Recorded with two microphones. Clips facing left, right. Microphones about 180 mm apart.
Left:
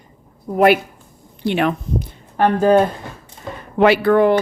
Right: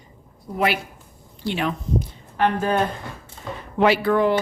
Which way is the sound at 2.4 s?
40° left (ahead or behind).